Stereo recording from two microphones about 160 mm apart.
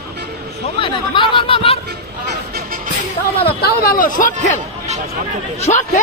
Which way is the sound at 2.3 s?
65° right (ahead or behind).